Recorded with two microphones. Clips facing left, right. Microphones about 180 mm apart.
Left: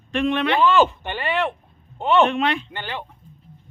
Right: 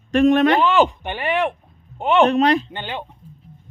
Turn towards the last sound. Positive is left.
turn(degrees=-20)  # may be behind; listen again after turning